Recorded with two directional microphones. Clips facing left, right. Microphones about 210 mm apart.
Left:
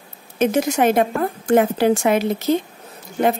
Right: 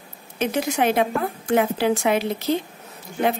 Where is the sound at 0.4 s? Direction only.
45° left (ahead or behind).